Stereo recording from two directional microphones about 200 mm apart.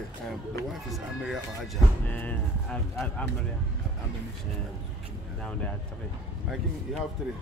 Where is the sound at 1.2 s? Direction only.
Centre (ahead or behind).